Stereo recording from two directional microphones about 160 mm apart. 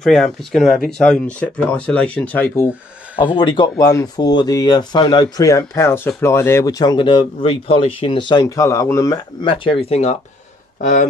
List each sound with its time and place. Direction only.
0.0 s speech: 5° left (ahead or behind)
3.2 s speech: 30° left (ahead or behind)
9.5 s speech: 35° left (ahead or behind)
10.8 s speech: 55° left (ahead or behind)